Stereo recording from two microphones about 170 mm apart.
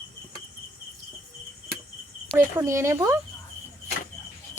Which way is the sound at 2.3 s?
15° right (ahead or behind).